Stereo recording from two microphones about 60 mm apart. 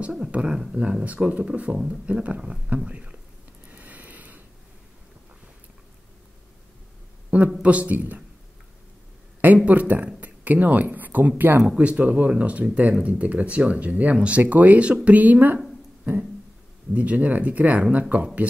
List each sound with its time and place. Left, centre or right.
0.3 s speech: centre
3.7 s a sound: right
7.2 s a sound: right
7.6 s speech: right
9.7 s speech: right
11.6 s speech: centre
16.9 s speech: right